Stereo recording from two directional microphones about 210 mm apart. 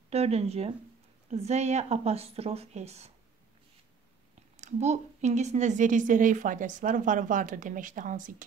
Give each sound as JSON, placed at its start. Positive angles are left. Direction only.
{"t": 0.1, "sound": "a woman's voice", "side_deg": -30}
{"t": 4.6, "sound": "a woman's voice", "side_deg": -35}